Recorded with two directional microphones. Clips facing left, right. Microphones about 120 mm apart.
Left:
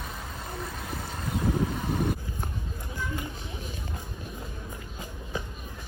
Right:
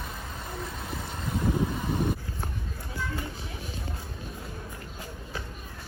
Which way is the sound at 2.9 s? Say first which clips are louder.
Even; 15° left (ahead or behind).